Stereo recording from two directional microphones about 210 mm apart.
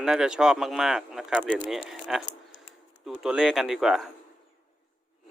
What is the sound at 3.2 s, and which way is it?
Speech, centre (ahead or behind).